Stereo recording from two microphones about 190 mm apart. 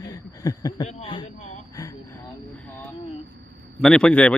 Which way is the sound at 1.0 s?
25° left (ahead or behind).